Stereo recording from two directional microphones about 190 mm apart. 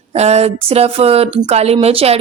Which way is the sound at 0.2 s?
35° right (ahead or behind).